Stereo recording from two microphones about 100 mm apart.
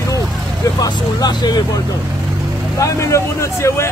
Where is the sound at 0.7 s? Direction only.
40° left (ahead or behind).